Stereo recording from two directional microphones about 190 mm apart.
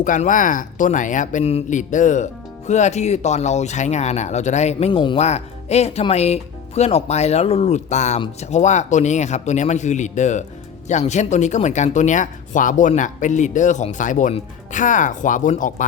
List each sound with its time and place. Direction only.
0.0 s speech: 45° left (ahead or behind)